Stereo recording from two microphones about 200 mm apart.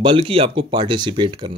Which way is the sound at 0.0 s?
25° right (ahead or behind).